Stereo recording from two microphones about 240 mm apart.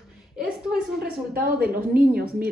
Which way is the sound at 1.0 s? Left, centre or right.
Right.